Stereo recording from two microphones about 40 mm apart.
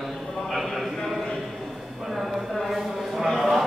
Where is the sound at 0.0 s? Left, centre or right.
Centre.